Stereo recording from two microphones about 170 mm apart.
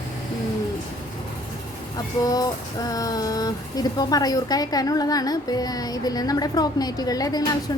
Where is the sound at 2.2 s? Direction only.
20° left (ahead or behind).